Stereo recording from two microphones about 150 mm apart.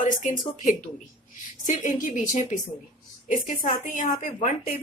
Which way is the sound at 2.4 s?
60° left (ahead or behind).